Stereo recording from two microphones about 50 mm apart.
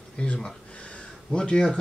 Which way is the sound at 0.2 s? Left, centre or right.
Left.